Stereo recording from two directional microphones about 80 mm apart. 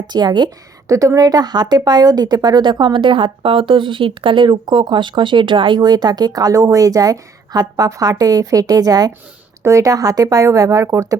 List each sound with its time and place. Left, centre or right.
0.1 s speech: right
0.9 s speech: right
9.6 s speech: right